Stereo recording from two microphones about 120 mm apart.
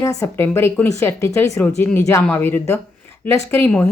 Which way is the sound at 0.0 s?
25° left (ahead or behind).